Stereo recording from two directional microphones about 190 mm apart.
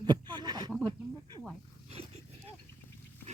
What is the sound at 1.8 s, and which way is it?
Dog, 35° right (ahead or behind).